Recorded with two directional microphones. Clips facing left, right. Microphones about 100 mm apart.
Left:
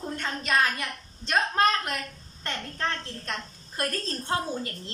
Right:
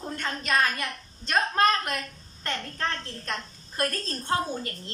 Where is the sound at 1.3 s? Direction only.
15° left (ahead or behind).